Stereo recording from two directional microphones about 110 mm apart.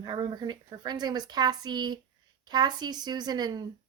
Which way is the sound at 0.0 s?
40° right (ahead or behind).